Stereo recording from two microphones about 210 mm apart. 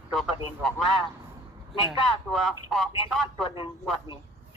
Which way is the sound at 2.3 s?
Centre (ahead or behind).